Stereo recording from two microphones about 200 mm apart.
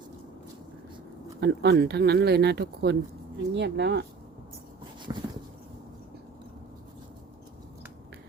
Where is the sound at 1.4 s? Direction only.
55° right (ahead or behind).